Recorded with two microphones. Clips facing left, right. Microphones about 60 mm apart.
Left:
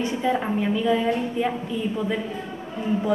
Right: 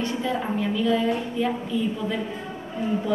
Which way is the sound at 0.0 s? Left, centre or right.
Centre.